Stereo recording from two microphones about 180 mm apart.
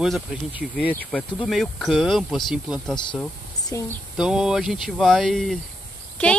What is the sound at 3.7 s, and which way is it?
Speech, 15° left (ahead or behind).